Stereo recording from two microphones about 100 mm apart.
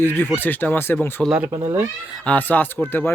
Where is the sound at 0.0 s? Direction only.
20° left (ahead or behind).